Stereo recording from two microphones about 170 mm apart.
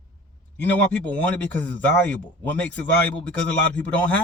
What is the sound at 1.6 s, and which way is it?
A man's voice, 10° left (ahead or behind).